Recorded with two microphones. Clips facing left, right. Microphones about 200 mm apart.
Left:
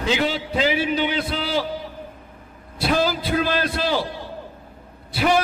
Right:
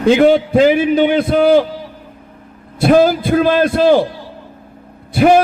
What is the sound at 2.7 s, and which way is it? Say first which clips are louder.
A man's voice: right 11 dB; 50° right (ahead or behind).